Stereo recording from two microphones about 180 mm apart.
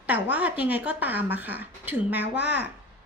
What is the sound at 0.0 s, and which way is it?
A woman's voice, 10° right (ahead or behind).